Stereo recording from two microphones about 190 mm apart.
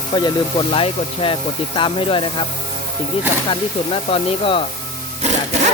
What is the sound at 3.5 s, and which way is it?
Speech, 30° left (ahead or behind).